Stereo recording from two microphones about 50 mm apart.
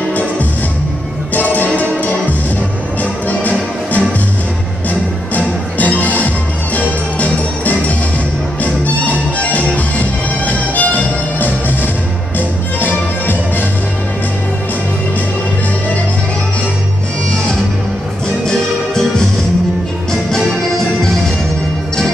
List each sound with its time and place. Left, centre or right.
0.1 s music: left
20.1 s music: centre